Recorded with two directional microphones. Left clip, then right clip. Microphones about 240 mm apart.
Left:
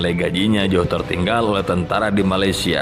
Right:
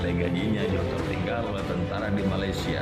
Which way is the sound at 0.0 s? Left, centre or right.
Left.